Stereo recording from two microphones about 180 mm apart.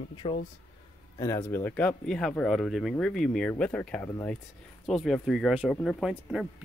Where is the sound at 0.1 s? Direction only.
30° left (ahead or behind).